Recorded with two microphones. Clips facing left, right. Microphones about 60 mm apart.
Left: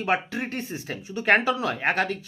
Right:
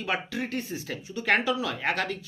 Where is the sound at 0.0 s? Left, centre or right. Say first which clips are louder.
Left 4 dB; left.